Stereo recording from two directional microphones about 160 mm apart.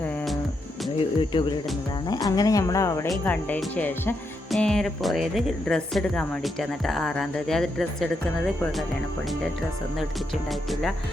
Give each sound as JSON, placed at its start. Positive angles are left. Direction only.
{"t": 1.2, "sound": "speech", "side_deg": 30}
{"t": 3.1, "sound": "a woman's voice", "side_deg": 10}
{"t": 10.5, "sound": "a woman's voice", "side_deg": 0}